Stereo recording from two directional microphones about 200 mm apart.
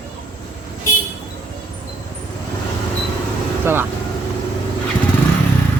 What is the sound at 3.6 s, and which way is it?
Speech, 10° right (ahead or behind).